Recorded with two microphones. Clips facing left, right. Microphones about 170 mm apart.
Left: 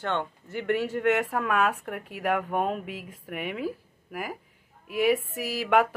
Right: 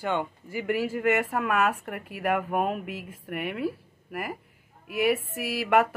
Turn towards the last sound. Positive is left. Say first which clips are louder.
# even
turn(degrees=-5)  # may be behind; listen again after turning